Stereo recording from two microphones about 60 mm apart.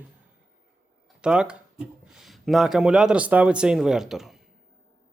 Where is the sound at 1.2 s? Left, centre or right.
Centre.